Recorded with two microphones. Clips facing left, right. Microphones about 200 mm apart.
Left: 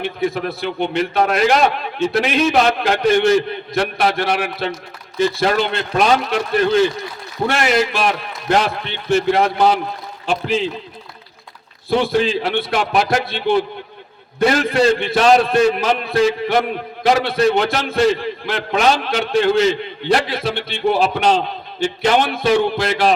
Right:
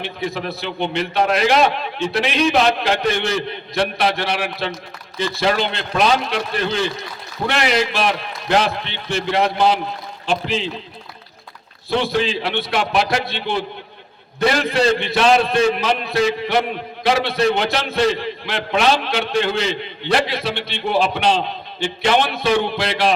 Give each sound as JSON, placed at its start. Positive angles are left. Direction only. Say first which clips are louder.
{"t": 0.0, "sound": "a man's voice", "louder": "left 4 dB", "side_deg": 50}
{"t": 11.9, "sound": "a man's voice", "louder": "left 3 dB", "side_deg": 50}